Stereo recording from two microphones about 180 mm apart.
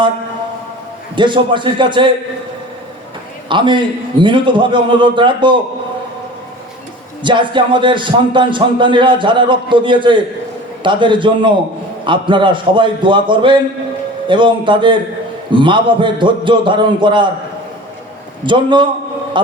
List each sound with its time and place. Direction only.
1.1 s music: 25° right (ahead or behind)
3.5 s music: 25° right (ahead or behind)
7.2 s music: 25° right (ahead or behind)
18.4 s music: 25° right (ahead or behind)